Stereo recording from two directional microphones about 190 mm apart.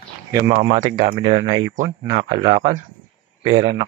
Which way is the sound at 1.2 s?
25° right (ahead or behind).